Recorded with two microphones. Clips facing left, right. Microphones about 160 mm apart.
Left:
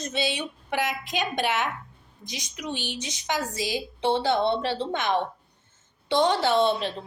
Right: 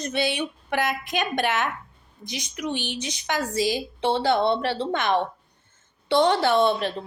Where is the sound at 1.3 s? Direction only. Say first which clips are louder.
Right 1 dB; 15° left (ahead or behind).